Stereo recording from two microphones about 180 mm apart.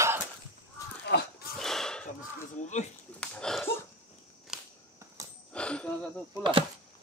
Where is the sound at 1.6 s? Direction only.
5° left (ahead or behind).